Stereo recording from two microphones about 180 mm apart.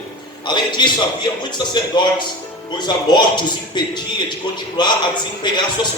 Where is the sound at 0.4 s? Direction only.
25° left (ahead or behind).